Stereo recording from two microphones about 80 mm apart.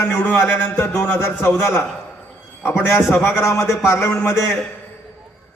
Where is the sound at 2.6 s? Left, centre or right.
Left.